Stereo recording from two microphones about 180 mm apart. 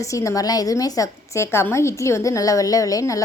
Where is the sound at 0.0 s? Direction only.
15° left (ahead or behind).